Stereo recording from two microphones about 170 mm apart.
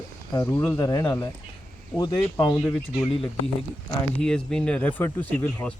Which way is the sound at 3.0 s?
35° left (ahead or behind).